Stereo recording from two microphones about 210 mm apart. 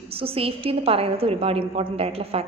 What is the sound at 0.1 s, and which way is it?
A woman's voice, 25° right (ahead or behind).